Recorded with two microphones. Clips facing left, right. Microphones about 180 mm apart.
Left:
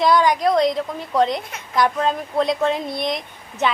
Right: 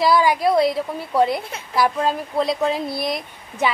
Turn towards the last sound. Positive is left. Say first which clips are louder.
# even
turn(degrees=-5)  # may be behind; listen again after turning